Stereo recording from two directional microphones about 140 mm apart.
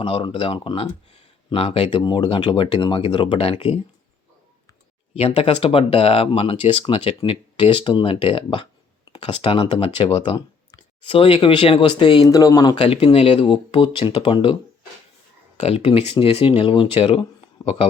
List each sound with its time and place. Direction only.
0.0 s speech: 40° left (ahead or behind)
5.1 s speech: 45° left (ahead or behind)
15.5 s speech: 50° left (ahead or behind)